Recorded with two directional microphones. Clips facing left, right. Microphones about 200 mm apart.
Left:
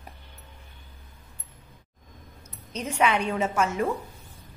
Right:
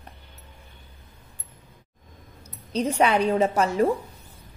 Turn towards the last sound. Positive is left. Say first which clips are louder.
# right 5 dB
turn(degrees=-35)  # may be behind; listen again after turning